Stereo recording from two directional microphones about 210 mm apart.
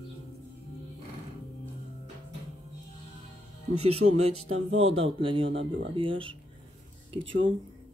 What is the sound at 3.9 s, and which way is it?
Speech, 90° right.